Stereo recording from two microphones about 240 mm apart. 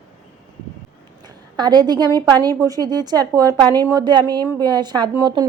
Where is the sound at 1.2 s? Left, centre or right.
Centre.